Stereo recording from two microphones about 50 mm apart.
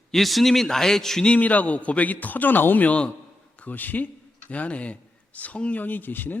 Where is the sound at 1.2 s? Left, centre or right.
Left.